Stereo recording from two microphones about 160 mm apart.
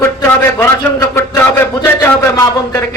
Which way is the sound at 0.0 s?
15° left (ahead or behind).